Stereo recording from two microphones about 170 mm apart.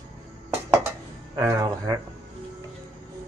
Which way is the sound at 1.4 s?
20° right (ahead or behind).